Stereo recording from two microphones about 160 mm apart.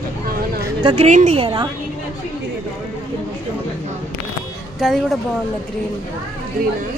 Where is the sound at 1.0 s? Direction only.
45° right (ahead or behind).